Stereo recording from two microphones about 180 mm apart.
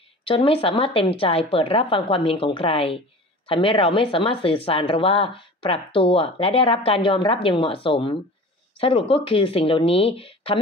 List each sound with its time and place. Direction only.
0.2 s a woman's voice: 30° left (ahead or behind)